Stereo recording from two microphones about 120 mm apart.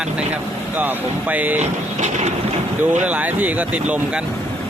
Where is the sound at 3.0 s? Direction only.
10° right (ahead or behind).